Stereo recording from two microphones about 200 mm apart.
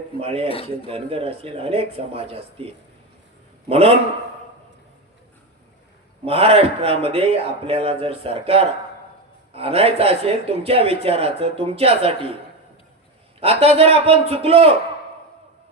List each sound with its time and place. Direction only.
0.4 s speech: 30° left (ahead or behind)
0.9 s speech: 30° right (ahead or behind)
3.7 s speech: 30° right (ahead or behind)
6.2 s speech: 30° right (ahead or behind)
13.4 s speech: 30° right (ahead or behind)